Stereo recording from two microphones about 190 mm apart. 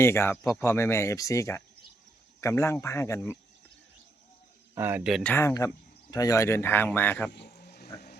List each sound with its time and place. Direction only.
0.0 s speech: 15° left (ahead or behind)
4.7 s speech: 10° right (ahead or behind)
5.2 s speech: 10° left (ahead or behind)
7.3 s a sound: 65° left (ahead or behind)